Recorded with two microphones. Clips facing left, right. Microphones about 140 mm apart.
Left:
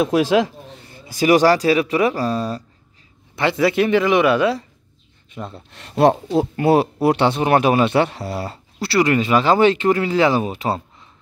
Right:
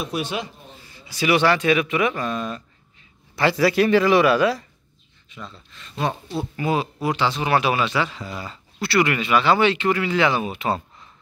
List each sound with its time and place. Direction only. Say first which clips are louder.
0.0 s speech: left 11 dB; 90° left
0.8 s speech: left 6 dB; 50° left (ahead or behind); by 2.6 s 35° left (ahead or behind)
3.3 s speech: left 1 dB; 20° left (ahead or behind)
5.3 s speech: left 7 dB; 55° left (ahead or behind)
8.7 s speech: left 4 dB; 35° left (ahead or behind)